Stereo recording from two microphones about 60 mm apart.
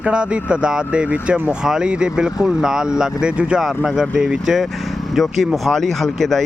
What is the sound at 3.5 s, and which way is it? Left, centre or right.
Speech, centre.